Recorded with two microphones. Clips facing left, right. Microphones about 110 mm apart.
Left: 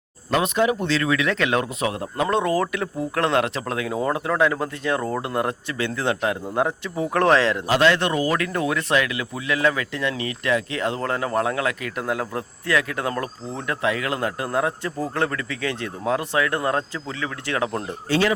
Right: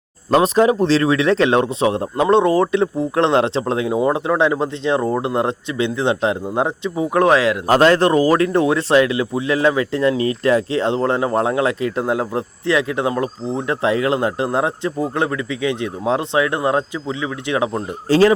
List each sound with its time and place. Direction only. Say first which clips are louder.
0.3 s speech: right 7 dB; 35° right (ahead or behind); by 7.6 s 10° right (ahead or behind)
7.7 s speech: right 7 dB; 40° right (ahead or behind); by 17.7 s 20° right (ahead or behind)
18.1 s speech: right 8 dB; 35° right (ahead or behind)